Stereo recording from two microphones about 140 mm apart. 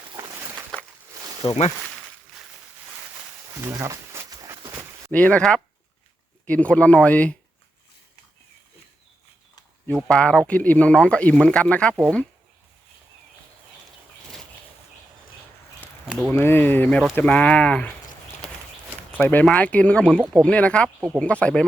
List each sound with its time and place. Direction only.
1.4 s speech: 35° left (ahead or behind)
3.5 s a sound: 20° right (ahead or behind)
5.1 s speech: 10° left (ahead or behind)
9.8 s speech: 5° left (ahead or behind)
16.0 s a sound: 5° right (ahead or behind)
16.3 s speech: 15° left (ahead or behind)
19.2 s speech: 10° left (ahead or behind)